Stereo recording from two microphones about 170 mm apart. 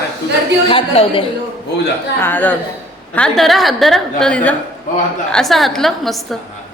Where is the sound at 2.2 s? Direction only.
10° left (ahead or behind).